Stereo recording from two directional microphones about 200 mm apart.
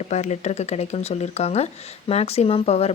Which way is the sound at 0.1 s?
35° left (ahead or behind).